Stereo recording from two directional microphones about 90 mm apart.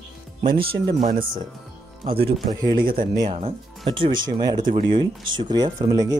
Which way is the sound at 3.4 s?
85° right.